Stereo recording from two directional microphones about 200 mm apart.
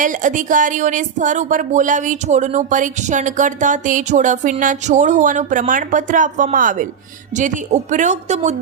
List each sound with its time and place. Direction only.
0.0 s speech: 40° right (ahead or behind)